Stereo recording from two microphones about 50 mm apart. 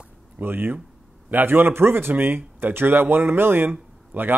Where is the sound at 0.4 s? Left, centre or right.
Right.